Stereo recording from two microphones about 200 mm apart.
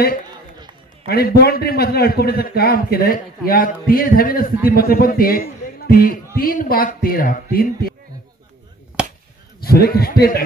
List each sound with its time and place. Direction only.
1.0 s a man's voice: 50° left (ahead or behind)
9.0 s chop: 5° right (ahead or behind)
9.6 s a man's voice: 50° left (ahead or behind)